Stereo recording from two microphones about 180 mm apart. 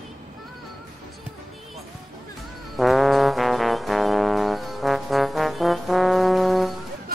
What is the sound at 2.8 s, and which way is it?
Brass instrument, centre (ahead or behind).